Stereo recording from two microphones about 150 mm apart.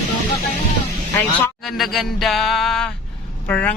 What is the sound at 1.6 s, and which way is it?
Speech, centre (ahead or behind).